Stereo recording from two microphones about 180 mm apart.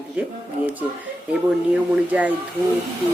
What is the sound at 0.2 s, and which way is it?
Speech, 10° right (ahead or behind).